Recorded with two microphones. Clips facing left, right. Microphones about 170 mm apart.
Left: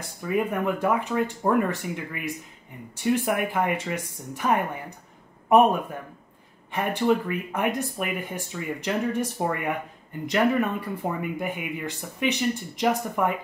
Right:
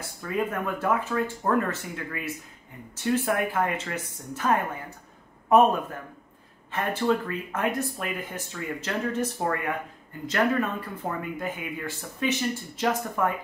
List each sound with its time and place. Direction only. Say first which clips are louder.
0.0 s speech: left 3 dB; 15° left (ahead or behind)
6.7 s speech: left 2 dB; 15° left (ahead or behind)